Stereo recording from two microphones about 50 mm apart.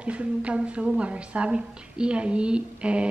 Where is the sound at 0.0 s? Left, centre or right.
Right.